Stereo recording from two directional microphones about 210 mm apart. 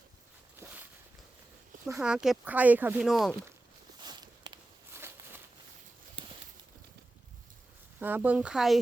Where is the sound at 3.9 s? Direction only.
20° right (ahead or behind).